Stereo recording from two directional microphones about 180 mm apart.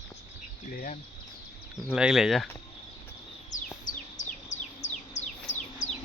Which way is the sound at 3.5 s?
45° left (ahead or behind).